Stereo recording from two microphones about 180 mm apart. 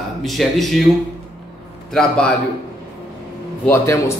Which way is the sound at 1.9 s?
5° left (ahead or behind).